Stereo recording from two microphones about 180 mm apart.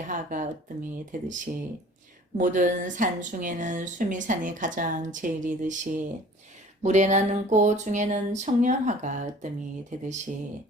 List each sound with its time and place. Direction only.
0.1 s speech: 45° right (ahead or behind)
2.4 s speech: 45° right (ahead or behind)
6.8 s a sound: 40° right (ahead or behind)
9.9 s speech: 40° right (ahead or behind)